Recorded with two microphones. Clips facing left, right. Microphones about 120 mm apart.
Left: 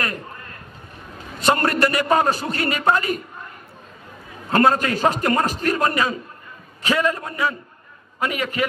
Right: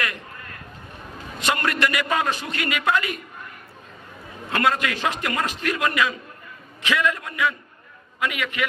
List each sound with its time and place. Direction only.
1.4 s a man's voice: 35° left (ahead or behind)
4.5 s a man's voice: 35° left (ahead or behind)